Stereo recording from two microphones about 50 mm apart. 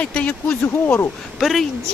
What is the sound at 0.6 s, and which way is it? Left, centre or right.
Speech, left.